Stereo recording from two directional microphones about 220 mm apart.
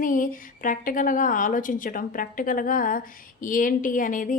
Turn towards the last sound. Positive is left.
turn(degrees=35)  # may be behind; listen again after turning